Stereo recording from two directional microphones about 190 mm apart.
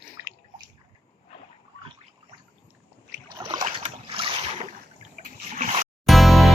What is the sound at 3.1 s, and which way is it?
Boat, 15° right (ahead or behind).